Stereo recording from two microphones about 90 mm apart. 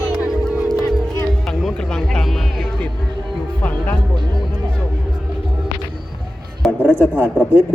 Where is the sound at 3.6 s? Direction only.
15° left (ahead or behind).